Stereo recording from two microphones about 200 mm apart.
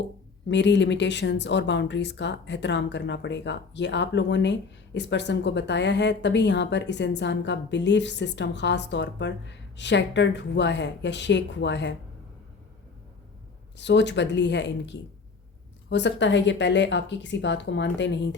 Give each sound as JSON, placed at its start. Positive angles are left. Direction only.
{"t": 0.4, "sound": "speech", "side_deg": 60}
{"t": 13.7, "sound": "speech", "side_deg": 60}